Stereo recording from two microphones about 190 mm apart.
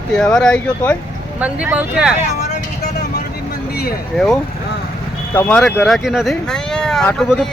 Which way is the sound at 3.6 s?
55° left (ahead or behind).